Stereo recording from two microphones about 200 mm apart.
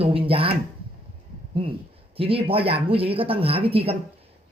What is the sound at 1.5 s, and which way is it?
Speech, 25° right (ahead or behind).